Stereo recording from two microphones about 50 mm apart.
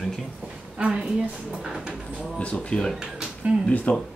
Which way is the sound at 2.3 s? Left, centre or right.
Left.